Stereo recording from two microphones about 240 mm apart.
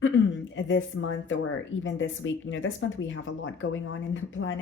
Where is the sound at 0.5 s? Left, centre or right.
Left.